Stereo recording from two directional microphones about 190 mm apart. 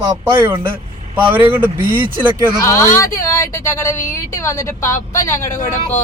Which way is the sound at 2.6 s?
15° left (ahead or behind).